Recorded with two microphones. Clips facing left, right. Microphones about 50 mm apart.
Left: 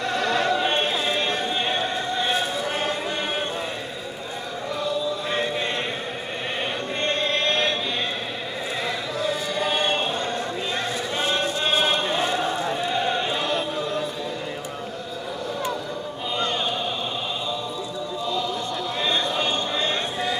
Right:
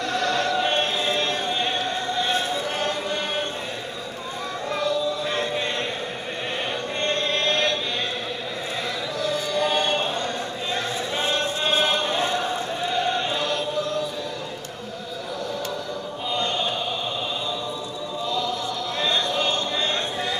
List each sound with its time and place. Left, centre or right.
0.0 s music: centre
2.6 s choir: centre
4.8 s music: centre
7.0 s chant: centre
9.2 s choir: centre
11.8 s a sound: centre
13.6 s choir: left
18.2 s a sound: centre